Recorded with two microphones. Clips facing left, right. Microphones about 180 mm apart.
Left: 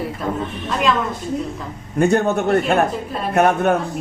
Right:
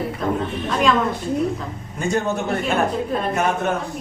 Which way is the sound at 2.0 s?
60° left (ahead or behind).